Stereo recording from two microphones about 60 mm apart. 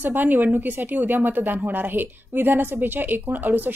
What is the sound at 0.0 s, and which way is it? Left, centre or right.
Speech, right.